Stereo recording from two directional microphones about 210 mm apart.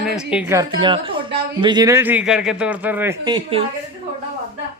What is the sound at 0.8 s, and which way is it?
Speech, 25° right (ahead or behind).